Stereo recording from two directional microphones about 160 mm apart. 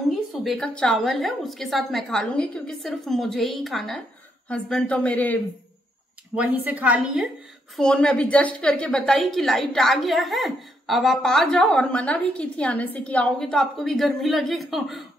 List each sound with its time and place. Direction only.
0.1 s a woman's voice: centre (ahead or behind)
6.3 s a woman's voice: 10° right (ahead or behind)
7.7 s a woman's voice: 5° left (ahead or behind)